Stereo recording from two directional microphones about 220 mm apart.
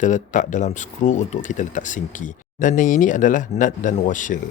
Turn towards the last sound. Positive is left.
turn(degrees=35)  # may be behind; listen again after turning